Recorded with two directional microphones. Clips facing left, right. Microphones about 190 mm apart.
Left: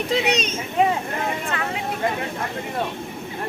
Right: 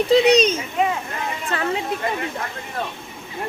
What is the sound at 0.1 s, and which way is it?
Speech, 35° right (ahead or behind).